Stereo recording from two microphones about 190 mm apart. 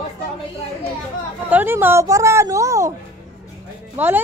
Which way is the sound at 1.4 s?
10° right (ahead or behind).